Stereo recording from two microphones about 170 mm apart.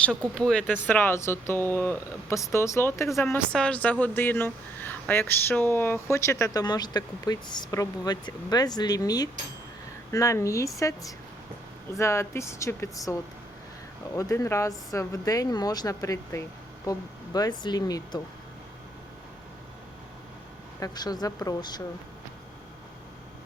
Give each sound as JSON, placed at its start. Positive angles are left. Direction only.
{"t": 0.0, "sound": "speech", "side_deg": 5}
{"t": 11.9, "sound": "speech", "side_deg": 15}
{"t": 14.2, "sound": "speech", "side_deg": 20}
{"t": 20.7, "sound": "speech", "side_deg": 25}